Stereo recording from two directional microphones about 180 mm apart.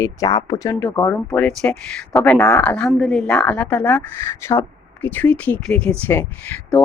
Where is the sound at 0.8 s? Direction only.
10° left (ahead or behind).